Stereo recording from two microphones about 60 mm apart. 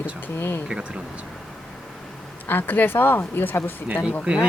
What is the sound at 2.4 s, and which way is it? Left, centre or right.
Speech, left.